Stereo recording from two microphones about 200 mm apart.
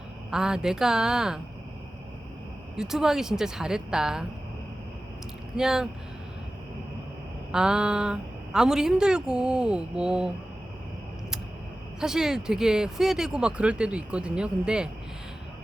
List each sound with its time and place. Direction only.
0.3 s speech: 5° right (ahead or behind)
2.7 s speech: centre (ahead or behind)
5.5 s speech: centre (ahead or behind)
7.5 s speech: 5° right (ahead or behind)
11.9 s speech: 5° right (ahead or behind)